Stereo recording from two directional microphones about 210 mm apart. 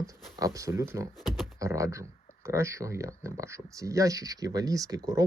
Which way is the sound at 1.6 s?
15° right (ahead or behind).